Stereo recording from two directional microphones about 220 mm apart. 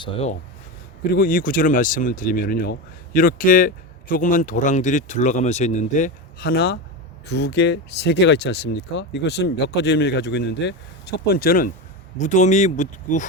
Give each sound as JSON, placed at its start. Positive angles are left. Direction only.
{"t": 0.0, "sound": "speech", "side_deg": 25}
{"t": 1.1, "sound": "speech", "side_deg": 40}